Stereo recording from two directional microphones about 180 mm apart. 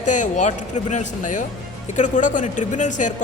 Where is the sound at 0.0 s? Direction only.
45° left (ahead or behind).